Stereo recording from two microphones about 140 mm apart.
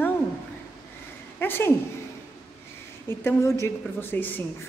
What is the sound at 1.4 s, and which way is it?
Speech, 15° left (ahead or behind).